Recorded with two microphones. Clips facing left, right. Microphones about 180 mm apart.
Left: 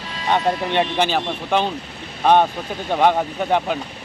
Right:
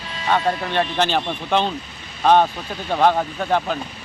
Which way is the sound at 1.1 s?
10° left (ahead or behind).